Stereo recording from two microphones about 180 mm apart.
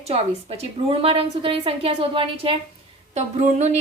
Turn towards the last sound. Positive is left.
turn(degrees=-40)  # may be behind; listen again after turning